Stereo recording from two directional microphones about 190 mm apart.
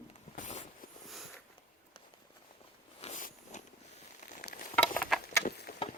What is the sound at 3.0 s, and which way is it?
Walk, 40° left (ahead or behind).